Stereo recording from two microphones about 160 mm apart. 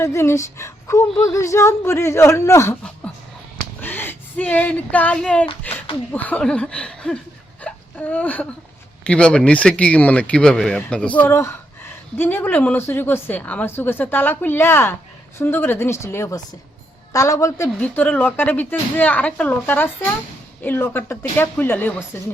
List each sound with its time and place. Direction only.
0.0 s a woman's voice: 15° left (ahead or behind)
3.8 s a woman's voice: 10° left (ahead or behind)
7.6 s a sound: 10° left (ahead or behind)
9.0 s a woman's voice: 5° left (ahead or behind)
17.7 s a woman's voice: 10° left (ahead or behind)